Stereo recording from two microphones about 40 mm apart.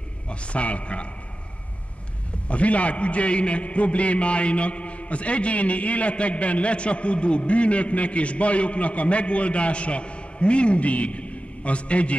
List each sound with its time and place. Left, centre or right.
0.3 s a man's voice: left
2.4 s a man's voice: left